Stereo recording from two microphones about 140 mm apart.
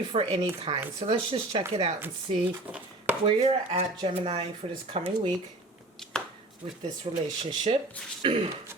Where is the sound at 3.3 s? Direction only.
45° right (ahead or behind).